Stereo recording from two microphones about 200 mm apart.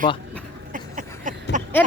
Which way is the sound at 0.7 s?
40° right (ahead or behind).